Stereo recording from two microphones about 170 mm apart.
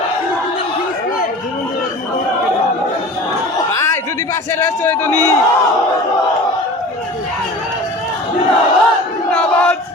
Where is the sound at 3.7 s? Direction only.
15° left (ahead or behind).